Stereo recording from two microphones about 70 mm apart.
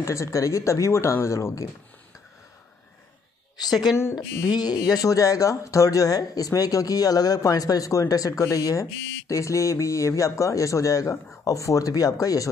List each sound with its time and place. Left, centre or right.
0.0 s a man's voice: left
3.5 s a woman's voice: left